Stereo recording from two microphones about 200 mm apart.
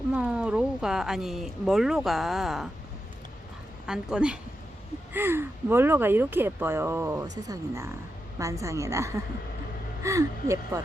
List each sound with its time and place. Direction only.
0.1 s speech: 5° right (ahead or behind)
3.8 s speech: 5° right (ahead or behind)